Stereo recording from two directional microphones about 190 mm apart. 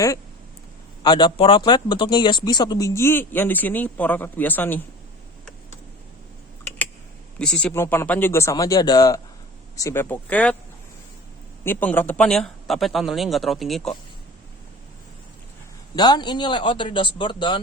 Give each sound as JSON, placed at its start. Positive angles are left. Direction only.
{"t": 1.0, "sound": "speech", "side_deg": 25}
{"t": 7.3, "sound": "speech", "side_deg": 5}
{"t": 11.6, "sound": "speech", "side_deg": 10}
{"t": 16.0, "sound": "speech", "side_deg": 20}